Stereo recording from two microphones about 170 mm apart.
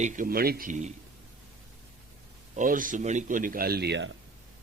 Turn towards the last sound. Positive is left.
turn(degrees=-80)